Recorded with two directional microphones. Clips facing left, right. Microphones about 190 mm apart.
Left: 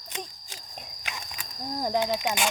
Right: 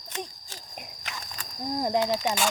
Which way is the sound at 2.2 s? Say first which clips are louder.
Right 1 dB; 15° left (ahead or behind).